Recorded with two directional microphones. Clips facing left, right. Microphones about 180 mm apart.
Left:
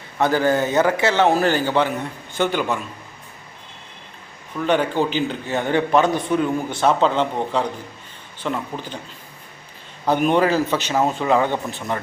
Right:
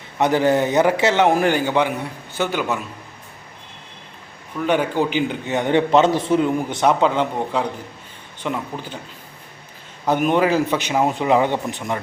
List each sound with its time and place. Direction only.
0.2 s a man's voice: 20° right (ahead or behind)
4.5 s a man's voice: 10° right (ahead or behind)
10.1 s a man's voice: 5° right (ahead or behind)